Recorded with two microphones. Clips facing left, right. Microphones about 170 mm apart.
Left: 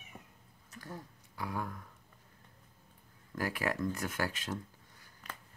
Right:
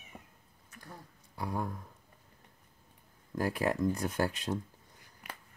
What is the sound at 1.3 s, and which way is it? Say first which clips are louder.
Speech: right 3 dB; 25° right (ahead or behind).